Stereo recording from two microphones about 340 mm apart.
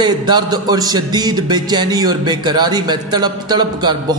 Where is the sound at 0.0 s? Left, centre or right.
Centre.